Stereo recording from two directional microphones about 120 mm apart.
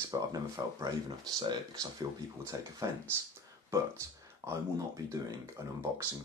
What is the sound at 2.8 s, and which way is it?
Speech, 25° right (ahead or behind).